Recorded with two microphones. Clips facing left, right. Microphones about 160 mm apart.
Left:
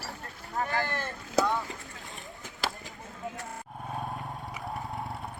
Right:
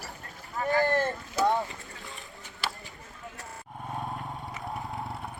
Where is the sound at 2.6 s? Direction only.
90° left.